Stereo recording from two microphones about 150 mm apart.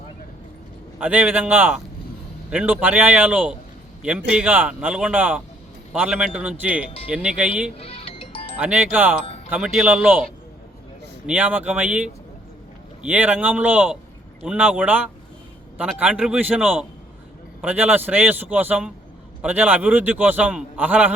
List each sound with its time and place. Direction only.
0.9 s a man's voice: 10° right (ahead or behind)
7.8 s music: 40° left (ahead or behind)
8.6 s a man's voice: 10° right (ahead or behind)
11.3 s a man's voice: 10° right (ahead or behind)